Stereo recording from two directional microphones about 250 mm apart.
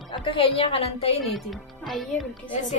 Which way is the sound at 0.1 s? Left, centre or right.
Centre.